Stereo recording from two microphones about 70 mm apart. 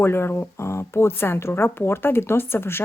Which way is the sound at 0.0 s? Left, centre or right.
Left.